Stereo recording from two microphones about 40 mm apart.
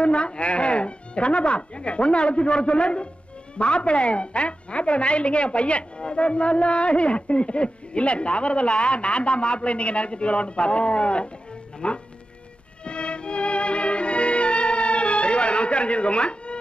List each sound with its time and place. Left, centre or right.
0.0 s a woman's voice: left
12.8 s music: left